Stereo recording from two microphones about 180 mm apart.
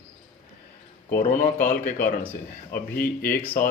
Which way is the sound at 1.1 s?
50° left (ahead or behind).